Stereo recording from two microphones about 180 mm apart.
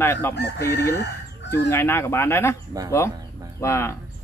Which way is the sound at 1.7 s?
15° left (ahead or behind).